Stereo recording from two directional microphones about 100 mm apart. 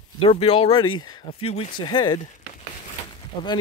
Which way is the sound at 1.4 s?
90° left.